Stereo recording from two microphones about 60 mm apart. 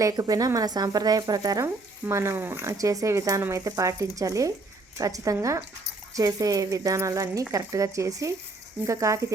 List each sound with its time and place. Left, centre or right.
0.0 s speech: right
1.6 s speech: right
2.7 s speech: right